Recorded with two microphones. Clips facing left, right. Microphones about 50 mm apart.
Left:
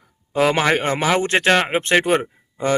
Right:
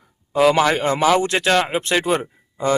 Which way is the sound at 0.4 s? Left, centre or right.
Left.